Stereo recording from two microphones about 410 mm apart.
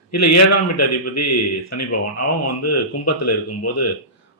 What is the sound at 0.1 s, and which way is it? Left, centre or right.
Speech, left.